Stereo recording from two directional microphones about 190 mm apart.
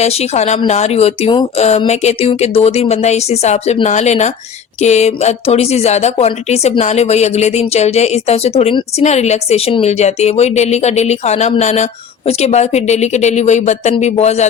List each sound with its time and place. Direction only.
0.0 s speech: 35° left (ahead or behind)